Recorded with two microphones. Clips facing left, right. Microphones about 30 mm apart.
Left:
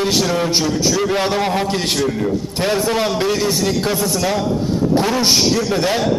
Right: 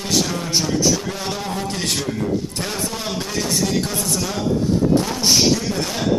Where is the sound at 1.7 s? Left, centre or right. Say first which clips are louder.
Left 5 dB; left.